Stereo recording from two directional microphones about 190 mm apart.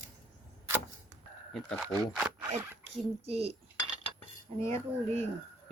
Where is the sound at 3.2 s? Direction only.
30° right (ahead or behind).